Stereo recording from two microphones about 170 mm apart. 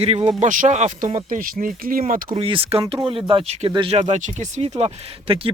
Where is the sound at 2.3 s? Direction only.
35° right (ahead or behind).